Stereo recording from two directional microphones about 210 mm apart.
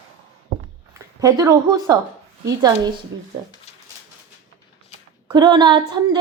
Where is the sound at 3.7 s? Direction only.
30° left (ahead or behind).